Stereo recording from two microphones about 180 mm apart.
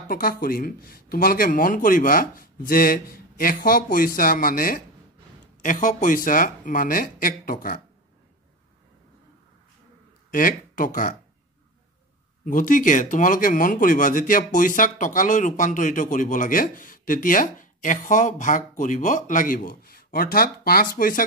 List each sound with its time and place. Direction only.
0.1 s speech: 50° left (ahead or behind)
10.3 s speech: 50° left (ahead or behind)
12.4 s speech: 50° left (ahead or behind)